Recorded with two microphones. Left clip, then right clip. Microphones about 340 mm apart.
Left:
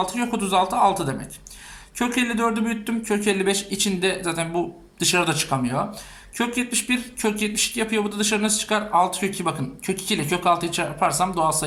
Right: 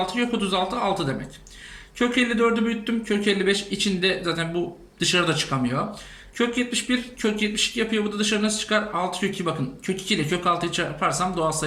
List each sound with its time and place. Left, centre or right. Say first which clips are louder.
0.0 s speech: even; centre